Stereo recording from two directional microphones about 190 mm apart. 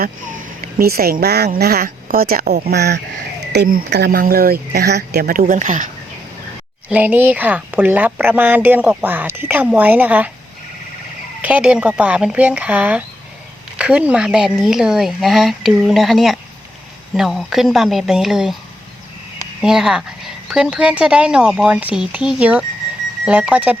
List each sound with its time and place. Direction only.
0.6 s speech: 50° right (ahead or behind)
2.7 s speech: 60° right (ahead or behind); by 5.9 s 45° right (ahead or behind)
6.9 s a woman's voice: 10° right (ahead or behind)
11.4 s a woman's voice: 5° right (ahead or behind)
19.6 s a woman's voice: 5° right (ahead or behind)